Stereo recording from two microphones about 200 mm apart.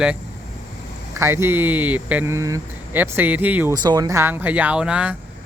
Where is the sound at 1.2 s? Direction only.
10° right (ahead or behind).